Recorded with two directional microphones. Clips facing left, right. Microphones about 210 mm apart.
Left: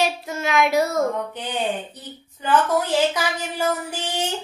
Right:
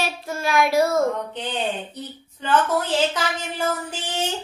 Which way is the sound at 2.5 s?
10° left (ahead or behind).